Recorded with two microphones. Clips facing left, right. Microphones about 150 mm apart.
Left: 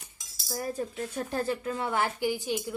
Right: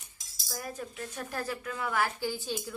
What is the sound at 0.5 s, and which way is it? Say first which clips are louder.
Speech: left 6 dB; 30° left (ahead or behind).